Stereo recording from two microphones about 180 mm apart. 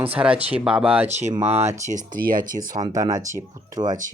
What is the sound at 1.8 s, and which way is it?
Speech, 45° right (ahead or behind).